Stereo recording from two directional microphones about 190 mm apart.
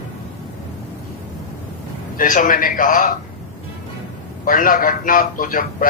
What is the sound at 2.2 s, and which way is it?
Speech, 45° left (ahead or behind).